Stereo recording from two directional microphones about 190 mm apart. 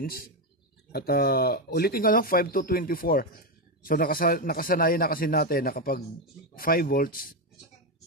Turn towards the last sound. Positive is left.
turn(degrees=50)  # may be behind; listen again after turning